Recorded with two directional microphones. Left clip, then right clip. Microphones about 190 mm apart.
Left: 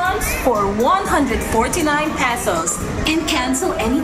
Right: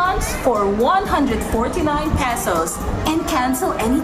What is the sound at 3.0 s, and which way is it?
Speech, 55° right (ahead or behind).